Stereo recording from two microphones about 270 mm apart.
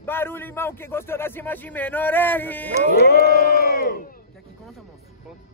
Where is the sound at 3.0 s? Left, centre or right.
Left.